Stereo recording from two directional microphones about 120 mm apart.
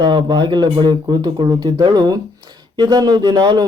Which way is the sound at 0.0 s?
40° right (ahead or behind).